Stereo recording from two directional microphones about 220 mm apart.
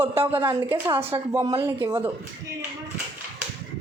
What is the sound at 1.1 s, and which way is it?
Speech, 20° right (ahead or behind).